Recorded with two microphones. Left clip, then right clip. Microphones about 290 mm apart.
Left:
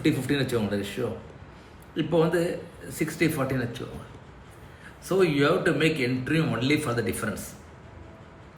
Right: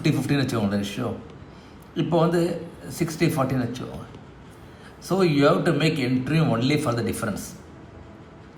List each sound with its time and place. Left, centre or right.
0.0 s a man's voice: right
2.0 s a man's voice: right
5.0 s a man's voice: right